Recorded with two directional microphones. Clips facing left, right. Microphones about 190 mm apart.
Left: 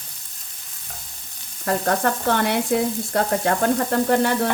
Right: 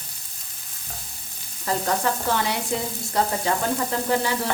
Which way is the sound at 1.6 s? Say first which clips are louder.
Left 3 dB; 55° left (ahead or behind).